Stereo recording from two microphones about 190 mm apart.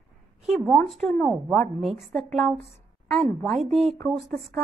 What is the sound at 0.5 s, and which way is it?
A woman's voice, 5° left (ahead or behind).